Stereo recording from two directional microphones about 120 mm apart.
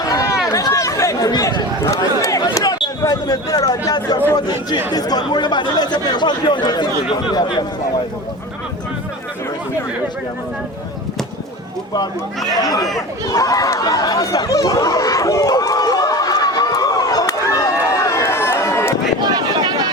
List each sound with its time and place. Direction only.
0.0 s a sound: 30° left (ahead or behind)
0.5 s chatter: 25° left (ahead or behind)
3.0 s speech: 30° left (ahead or behind)
12.5 s speech: 30° left (ahead or behind)
13.2 s chatter: 30° left (ahead or behind)
19.3 s a sound: 35° right (ahead or behind)